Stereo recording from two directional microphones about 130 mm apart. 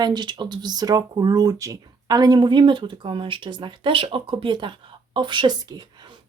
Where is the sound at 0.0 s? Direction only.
35° right (ahead or behind).